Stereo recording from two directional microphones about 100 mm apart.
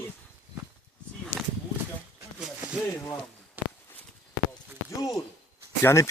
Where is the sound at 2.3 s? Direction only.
10° right (ahead or behind).